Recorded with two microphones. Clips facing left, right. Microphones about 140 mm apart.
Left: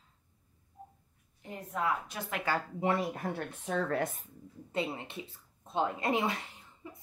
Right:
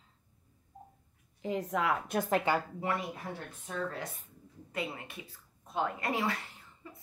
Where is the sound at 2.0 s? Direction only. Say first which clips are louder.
Right 9 dB; 50° right (ahead or behind).